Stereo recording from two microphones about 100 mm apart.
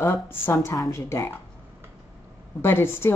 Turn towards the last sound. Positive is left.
turn(degrees=25)  # may be behind; listen again after turning